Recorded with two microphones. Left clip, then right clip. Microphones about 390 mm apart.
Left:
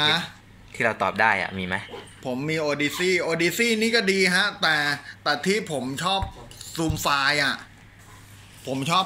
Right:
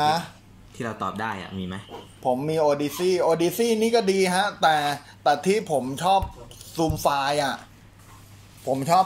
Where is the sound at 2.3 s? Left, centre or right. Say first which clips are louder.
Right 2 dB; centre.